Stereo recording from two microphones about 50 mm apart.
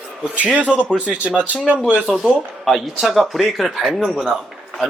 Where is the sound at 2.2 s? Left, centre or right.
Centre.